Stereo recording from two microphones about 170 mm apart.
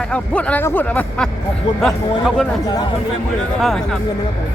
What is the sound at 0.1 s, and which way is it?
Speech, 10° left (ahead or behind).